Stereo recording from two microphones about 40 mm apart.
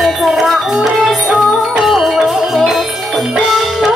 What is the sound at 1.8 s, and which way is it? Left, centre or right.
Music, centre.